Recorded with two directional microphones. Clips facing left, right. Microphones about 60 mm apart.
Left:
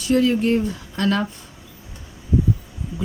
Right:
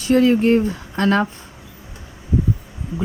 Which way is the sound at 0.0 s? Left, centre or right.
Right.